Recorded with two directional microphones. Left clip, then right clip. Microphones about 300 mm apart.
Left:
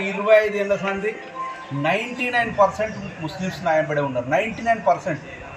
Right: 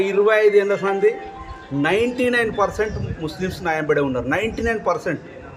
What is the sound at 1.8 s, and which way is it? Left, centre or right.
A man's voice, centre.